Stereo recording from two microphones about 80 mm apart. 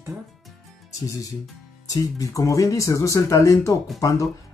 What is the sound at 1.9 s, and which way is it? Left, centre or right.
Speech, left.